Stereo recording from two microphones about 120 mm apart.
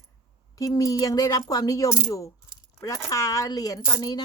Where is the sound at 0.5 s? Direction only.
30° left (ahead or behind).